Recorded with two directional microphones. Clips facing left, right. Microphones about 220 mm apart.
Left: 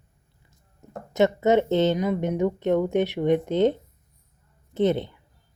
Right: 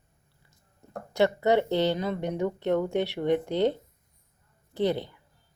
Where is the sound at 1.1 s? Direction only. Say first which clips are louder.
Left 3 dB; 20° left (ahead or behind).